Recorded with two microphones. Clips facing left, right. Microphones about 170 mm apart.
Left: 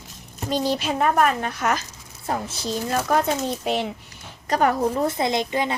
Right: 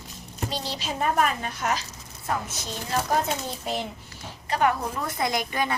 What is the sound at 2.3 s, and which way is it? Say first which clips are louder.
Speech: left 2 dB; 30° left (ahead or behind).